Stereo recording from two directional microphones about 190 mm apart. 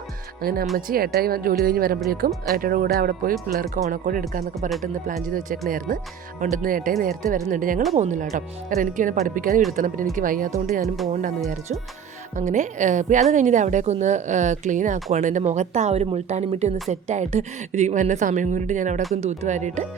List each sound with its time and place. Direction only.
0.4 s a woman's voice: 50° right (ahead or behind)
10.8 s speech: centre (ahead or behind)
12.4 s a woman's voice: 40° right (ahead or behind)